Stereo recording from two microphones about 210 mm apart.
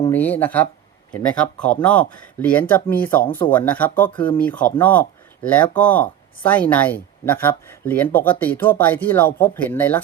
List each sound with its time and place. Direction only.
0.0 s speech: 10° left (ahead or behind)
3.2 s speech: 25° left (ahead or behind)
3.5 s speech: 10° left (ahead or behind)